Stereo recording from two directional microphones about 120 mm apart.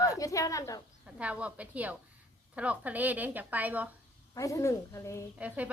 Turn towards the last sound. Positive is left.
turn(degrees=-10)  # may be behind; listen again after turning